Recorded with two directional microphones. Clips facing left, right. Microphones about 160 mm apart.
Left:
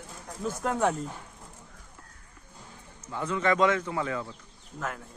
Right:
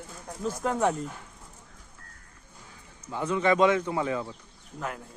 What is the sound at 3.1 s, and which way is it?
Speech, 15° right (ahead or behind).